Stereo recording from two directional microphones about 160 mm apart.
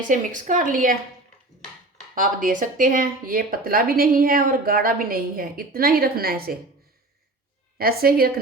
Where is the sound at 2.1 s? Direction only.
55° right (ahead or behind).